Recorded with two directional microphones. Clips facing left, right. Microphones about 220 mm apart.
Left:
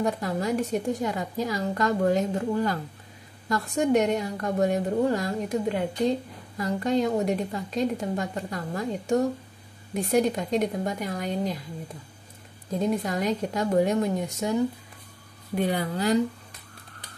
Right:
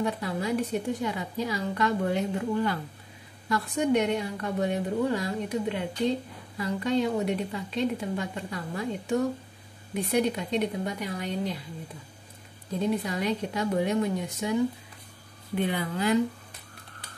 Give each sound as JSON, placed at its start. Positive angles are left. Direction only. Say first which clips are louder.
{"t": 0.0, "sound": "a woman's voice", "louder": "left 3 dB", "side_deg": 45}
{"t": 13.0, "sound": "a woman's voice", "louder": "left 2 dB", "side_deg": 45}